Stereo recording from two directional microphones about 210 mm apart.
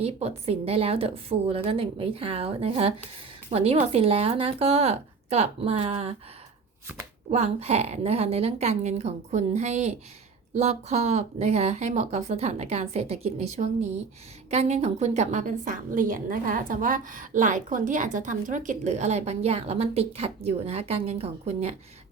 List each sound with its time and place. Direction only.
0.0 s a woman's voice: 30° right (ahead or behind)
7.3 s a woman's voice: 30° right (ahead or behind)